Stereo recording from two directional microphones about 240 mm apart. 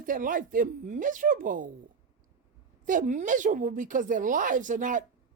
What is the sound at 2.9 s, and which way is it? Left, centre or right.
Speech, right.